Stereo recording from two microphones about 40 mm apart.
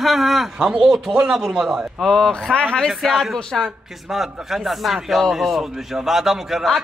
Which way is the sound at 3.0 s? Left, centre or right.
Centre.